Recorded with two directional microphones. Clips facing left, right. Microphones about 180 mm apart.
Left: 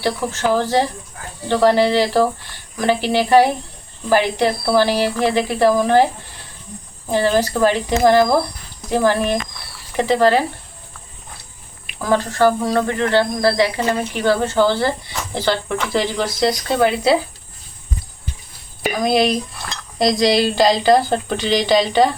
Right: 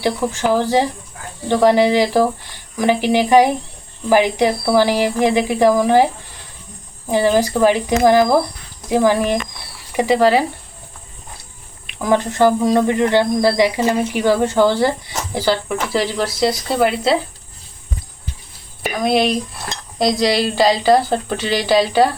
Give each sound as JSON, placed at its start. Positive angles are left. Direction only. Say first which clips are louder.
{"t": 0.0, "sound": "speech", "louder": "right 2 dB", "side_deg": -15}
{"t": 7.1, "sound": "speech", "louder": "right 2 dB", "side_deg": -15}
{"t": 11.9, "sound": "speech", "louder": "right 2 dB", "side_deg": -15}
{"t": 15.9, "sound": "cricket", "louder": "right 1 dB", "side_deg": -5}
{"t": 18.8, "sound": "cricket", "louder": "even", "side_deg": 0}